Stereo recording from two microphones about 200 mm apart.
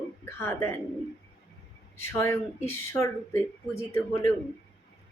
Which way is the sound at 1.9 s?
10° left (ahead or behind).